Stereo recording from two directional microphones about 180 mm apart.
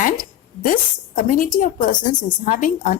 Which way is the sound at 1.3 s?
50° left (ahead or behind).